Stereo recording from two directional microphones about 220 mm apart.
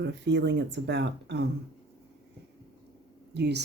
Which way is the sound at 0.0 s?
50° right (ahead or behind).